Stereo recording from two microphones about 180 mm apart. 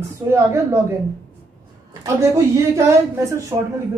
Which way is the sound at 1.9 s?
15° right (ahead or behind).